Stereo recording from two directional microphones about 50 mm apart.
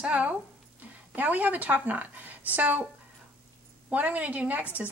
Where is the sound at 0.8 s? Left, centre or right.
Right.